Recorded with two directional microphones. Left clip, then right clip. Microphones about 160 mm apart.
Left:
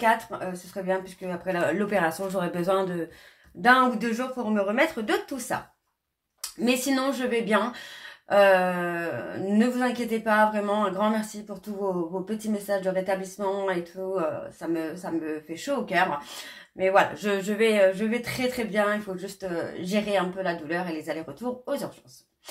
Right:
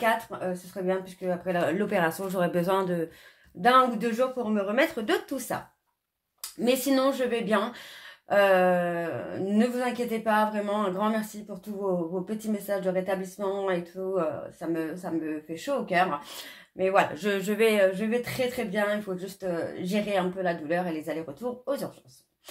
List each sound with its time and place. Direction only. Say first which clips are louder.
0.0 s speech: left 2 dB; 30° right (ahead or behind)
6.6 s speech: right 1 dB; 35° right (ahead or behind)
12.4 s speech: left 4 dB; 35° right (ahead or behind)